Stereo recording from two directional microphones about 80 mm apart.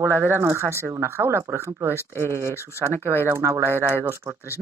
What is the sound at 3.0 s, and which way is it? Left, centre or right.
Speech, right.